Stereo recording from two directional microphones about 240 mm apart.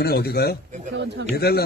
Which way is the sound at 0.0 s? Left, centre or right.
Left.